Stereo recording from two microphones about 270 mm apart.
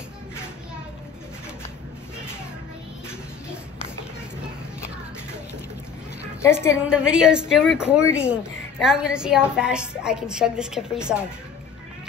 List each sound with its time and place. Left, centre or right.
6.4 s a woman's voice: centre
7.1 s a woman's voice: centre